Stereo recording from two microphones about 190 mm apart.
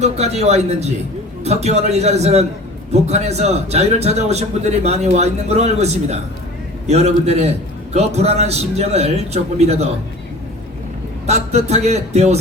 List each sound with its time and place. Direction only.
0.0 s a man's voice: 35° right (ahead or behind)
11.3 s a man's voice: 35° right (ahead or behind)